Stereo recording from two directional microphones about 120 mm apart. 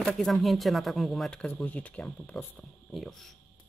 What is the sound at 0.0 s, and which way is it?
Speech, 5° left (ahead or behind).